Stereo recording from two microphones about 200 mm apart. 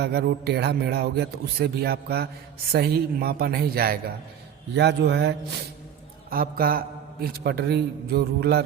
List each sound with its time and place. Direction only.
0.0 s a man's voice: 55° right (ahead or behind)
6.3 s a man's voice: 45° right (ahead or behind)